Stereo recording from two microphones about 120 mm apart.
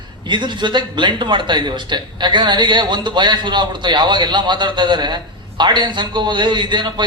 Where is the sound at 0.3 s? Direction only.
40° right (ahead or behind).